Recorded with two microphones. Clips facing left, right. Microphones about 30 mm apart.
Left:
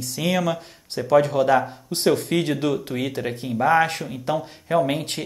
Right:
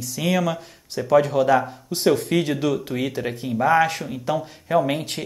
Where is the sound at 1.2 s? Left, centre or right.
Left; by 3.9 s centre.